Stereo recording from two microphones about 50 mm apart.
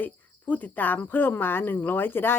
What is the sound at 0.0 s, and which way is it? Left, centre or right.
A woman's voice, left.